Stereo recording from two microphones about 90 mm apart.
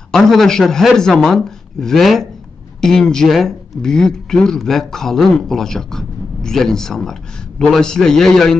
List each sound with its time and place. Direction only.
0.1 s speech: 5° left (ahead or behind)